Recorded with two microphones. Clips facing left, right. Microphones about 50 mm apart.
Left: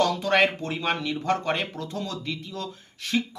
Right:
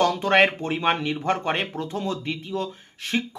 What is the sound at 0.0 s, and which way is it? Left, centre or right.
Speech, right.